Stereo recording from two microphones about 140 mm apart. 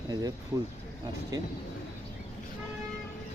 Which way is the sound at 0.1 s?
25° right (ahead or behind).